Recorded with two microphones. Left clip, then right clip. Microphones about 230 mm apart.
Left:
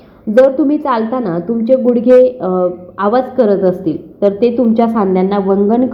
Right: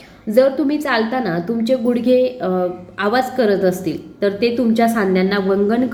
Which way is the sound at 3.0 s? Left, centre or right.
Centre.